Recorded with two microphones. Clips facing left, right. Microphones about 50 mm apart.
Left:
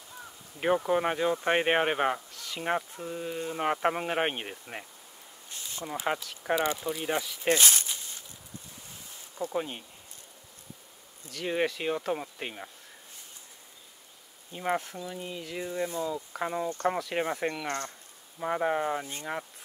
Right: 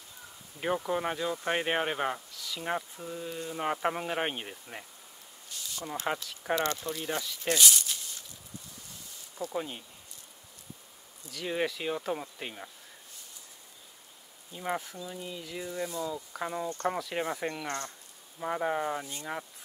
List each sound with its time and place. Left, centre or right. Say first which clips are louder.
0.6 s speech: left 4 dB; centre
2.4 s a sound: left 2 dB; left
2.7 s speech: left 4 dB; centre
5.5 s a sound: left 1 dB; left
5.9 s speech: left 2 dB; centre
7.5 s a sound: even; left
9.5 s speech: left 3 dB; centre
11.3 s speech: left 2 dB; centre
14.5 s speech: left 4 dB; centre
16.1 s speech: left 3 dB; centre